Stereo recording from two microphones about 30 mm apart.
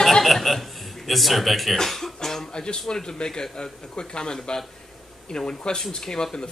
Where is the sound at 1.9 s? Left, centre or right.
Centre.